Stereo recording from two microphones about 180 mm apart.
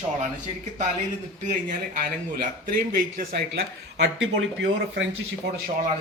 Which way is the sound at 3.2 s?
65° right (ahead or behind).